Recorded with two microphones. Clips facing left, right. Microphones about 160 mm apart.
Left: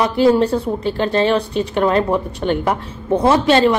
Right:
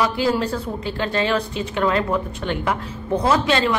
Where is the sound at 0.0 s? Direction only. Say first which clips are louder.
Left 7 dB; 30° left (ahead or behind).